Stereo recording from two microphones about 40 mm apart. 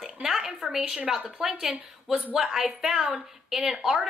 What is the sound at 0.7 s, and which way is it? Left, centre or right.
A woman's voice, centre.